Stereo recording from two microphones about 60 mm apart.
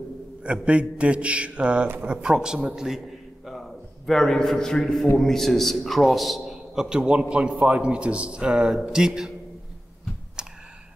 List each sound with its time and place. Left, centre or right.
0.4 s a man's voice: centre
3.4 s a sound: centre
5.1 s a man's voice: centre
10.4 s computer keyboard: centre